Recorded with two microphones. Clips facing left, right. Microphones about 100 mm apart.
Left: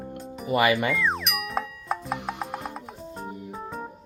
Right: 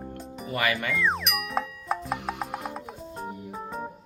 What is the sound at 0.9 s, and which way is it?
Music, centre (ahead or behind).